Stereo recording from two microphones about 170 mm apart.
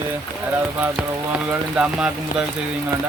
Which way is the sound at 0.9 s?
5° right (ahead or behind).